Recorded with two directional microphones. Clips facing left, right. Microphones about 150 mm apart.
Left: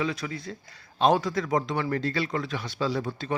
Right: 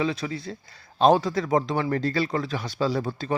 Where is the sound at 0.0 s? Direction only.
30° right (ahead or behind).